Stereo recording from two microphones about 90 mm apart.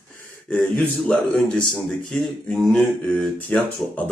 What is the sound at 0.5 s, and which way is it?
Speech, 15° left (ahead or behind).